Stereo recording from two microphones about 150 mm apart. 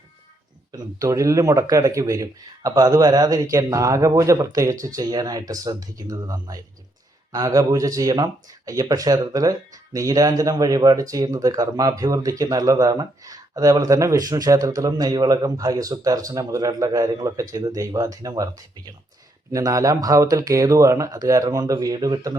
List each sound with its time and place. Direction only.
0.7 s speech: 20° right (ahead or behind)
19.5 s speech: 20° right (ahead or behind)